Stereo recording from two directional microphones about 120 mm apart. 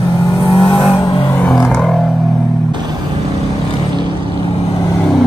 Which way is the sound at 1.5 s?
20° left (ahead or behind).